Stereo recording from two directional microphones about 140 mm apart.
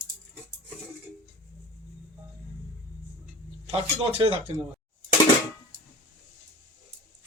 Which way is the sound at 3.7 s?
40° right (ahead or behind).